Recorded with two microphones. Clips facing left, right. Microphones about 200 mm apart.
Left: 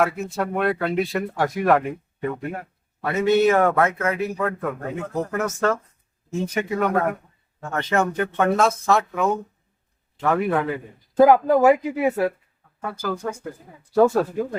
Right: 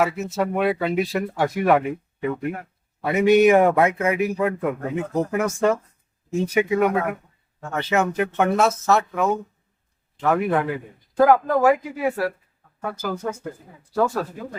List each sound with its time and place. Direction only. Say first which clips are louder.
0.0 s speech: right 1 dB; 5° right (ahead or behind)
3.0 s a man's voice: right 3 dB; 15° right (ahead or behind)
11.2 s speech: left 2 dB; 20° left (ahead or behind)
12.8 s a man's voice: even; 5° right (ahead or behind)
13.9 s speech: left 5 dB; 25° left (ahead or behind)